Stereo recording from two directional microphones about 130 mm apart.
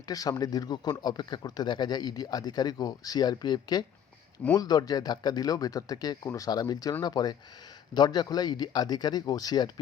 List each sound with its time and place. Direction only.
0.1 s speech: 30° left (ahead or behind)